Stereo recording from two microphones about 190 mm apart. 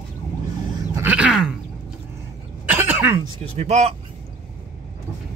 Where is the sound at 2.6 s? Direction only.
10° right (ahead or behind).